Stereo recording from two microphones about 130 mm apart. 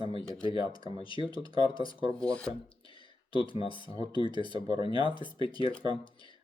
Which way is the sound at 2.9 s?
40° left (ahead or behind).